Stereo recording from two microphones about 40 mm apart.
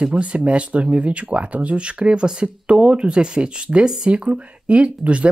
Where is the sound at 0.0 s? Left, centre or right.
Right.